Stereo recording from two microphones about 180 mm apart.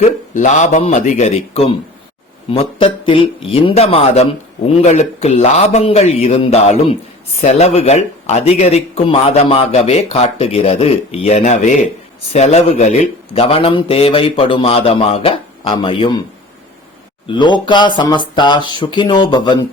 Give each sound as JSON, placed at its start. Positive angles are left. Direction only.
{"t": 0.3, "sound": "speech", "side_deg": 40}
{"t": 17.2, "sound": "speech", "side_deg": 25}